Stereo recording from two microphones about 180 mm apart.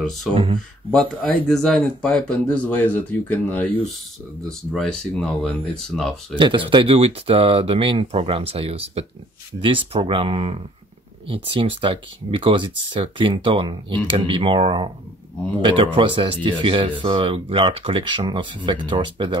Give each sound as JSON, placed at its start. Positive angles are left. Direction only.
{"t": 0.0, "sound": "speech", "side_deg": 0}
{"t": 0.3, "sound": "speech", "side_deg": -25}
{"t": 1.2, "sound": "speech", "side_deg": 5}
{"t": 6.3, "sound": "speech", "side_deg": -30}